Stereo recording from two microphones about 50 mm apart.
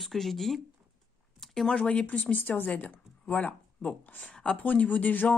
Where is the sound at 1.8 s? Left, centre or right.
Left.